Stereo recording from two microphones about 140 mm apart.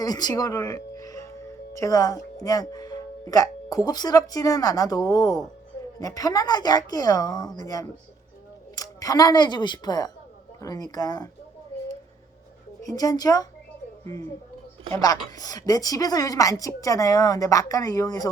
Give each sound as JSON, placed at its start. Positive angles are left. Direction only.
{"t": 0.0, "sound": "a woman's voice", "side_deg": 30}
{"t": 12.8, "sound": "a woman's voice", "side_deg": 25}
{"t": 14.9, "sound": "a woman's voice", "side_deg": 25}